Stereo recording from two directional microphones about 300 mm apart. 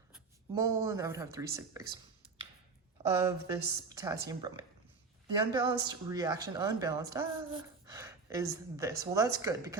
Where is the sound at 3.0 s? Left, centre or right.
Centre.